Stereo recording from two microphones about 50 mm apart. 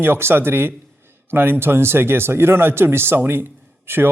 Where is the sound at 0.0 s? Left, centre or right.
Right.